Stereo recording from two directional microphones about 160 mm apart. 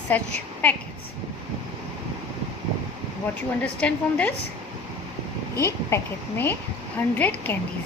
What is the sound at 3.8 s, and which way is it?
Speech, 10° left (ahead or behind).